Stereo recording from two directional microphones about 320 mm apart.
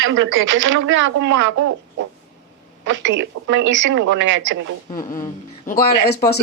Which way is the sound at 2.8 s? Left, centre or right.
Right.